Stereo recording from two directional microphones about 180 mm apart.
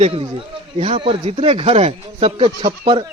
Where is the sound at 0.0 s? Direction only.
35° right (ahead or behind).